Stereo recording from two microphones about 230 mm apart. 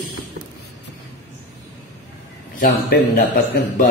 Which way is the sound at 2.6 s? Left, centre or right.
Left.